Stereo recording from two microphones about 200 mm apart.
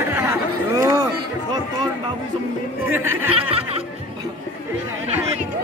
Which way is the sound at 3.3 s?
30° right (ahead or behind).